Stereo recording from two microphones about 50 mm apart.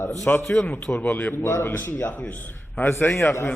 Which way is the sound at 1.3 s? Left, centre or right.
Left.